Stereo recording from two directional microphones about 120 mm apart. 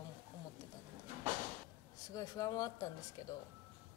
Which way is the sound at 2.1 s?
30° left (ahead or behind).